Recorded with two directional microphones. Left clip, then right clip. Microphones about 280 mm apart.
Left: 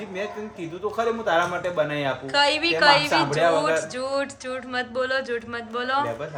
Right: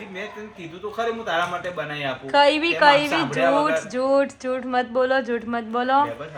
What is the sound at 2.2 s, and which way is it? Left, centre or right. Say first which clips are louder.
Speech: right 4 dB; centre.